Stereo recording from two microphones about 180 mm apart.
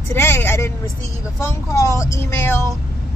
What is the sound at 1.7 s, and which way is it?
Speech, 20° left (ahead or behind).